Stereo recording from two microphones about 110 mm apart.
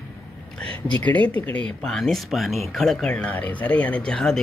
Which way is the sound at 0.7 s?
45° right (ahead or behind).